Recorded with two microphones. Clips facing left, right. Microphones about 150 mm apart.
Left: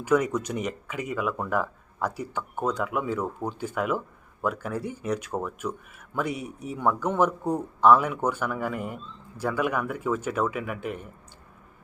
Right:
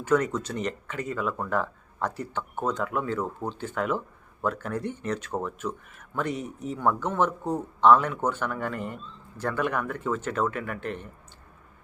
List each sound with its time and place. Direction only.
0.0 s speech: 10° left (ahead or behind)